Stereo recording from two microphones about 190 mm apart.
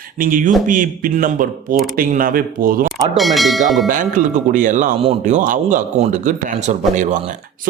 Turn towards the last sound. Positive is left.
turn(degrees=-40)  # may be behind; listen again after turning